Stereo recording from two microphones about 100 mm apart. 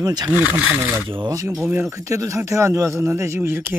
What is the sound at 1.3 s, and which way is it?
Speech, 35° right (ahead or behind).